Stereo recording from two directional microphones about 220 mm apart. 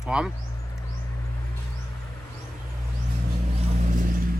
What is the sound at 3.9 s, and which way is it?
Vehicle, 40° right (ahead or behind).